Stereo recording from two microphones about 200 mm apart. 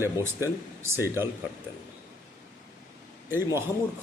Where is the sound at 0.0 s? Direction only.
10° right (ahead or behind).